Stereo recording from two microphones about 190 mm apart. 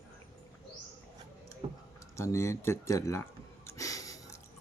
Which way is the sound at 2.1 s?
15° left (ahead or behind).